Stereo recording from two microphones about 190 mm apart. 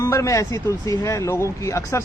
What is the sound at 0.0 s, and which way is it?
A man's voice, 15° left (ahead or behind).